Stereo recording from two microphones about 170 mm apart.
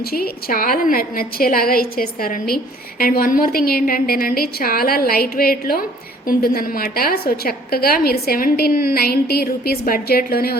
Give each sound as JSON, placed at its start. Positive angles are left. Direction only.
{"t": 0.0, "sound": "a woman's voice", "side_deg": 60}